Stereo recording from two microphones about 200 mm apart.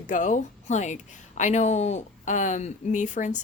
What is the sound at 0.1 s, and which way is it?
Speech, 40° left (ahead or behind).